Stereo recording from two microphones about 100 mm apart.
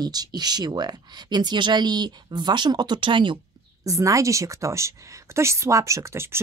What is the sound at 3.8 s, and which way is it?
Speech, 35° right (ahead or behind).